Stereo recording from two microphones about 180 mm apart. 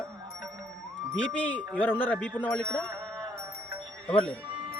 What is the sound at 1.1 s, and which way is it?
Speech, 5° left (ahead or behind).